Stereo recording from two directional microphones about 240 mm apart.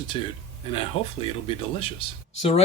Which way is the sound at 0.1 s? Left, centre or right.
Left.